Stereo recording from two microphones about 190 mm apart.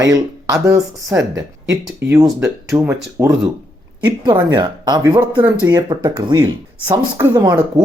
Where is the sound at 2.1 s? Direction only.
15° right (ahead or behind).